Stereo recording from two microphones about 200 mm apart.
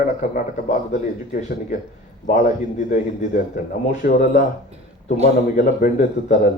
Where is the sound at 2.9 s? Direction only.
40° left (ahead or behind).